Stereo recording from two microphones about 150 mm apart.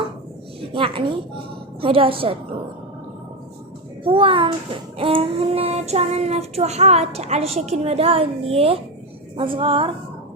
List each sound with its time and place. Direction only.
0.7 s a woman's voice: 35° right (ahead or behind)
4.0 s a woman's voice: 35° right (ahead or behind)
4.9 s child singing: 40° right (ahead or behind)
9.3 s a woman's voice: 35° right (ahead or behind)